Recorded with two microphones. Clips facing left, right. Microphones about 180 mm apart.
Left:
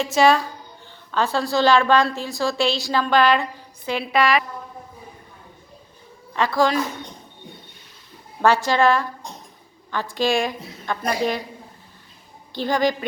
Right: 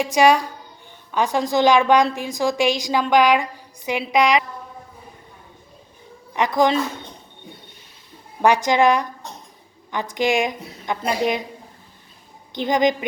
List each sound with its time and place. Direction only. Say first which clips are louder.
0.0 s a woman's voice: right 1 dB; 15° right (ahead or behind)
6.3 s a woman's voice: right 1 dB; 20° right (ahead or behind)
8.4 s a woman's voice: right 1 dB; 15° right (ahead or behind)
12.5 s a woman's voice: right 2 dB; 20° right (ahead or behind)